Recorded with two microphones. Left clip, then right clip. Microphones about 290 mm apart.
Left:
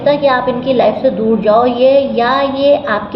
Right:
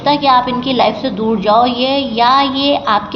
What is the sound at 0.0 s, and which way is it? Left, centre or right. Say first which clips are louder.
A woman's voice: even; right.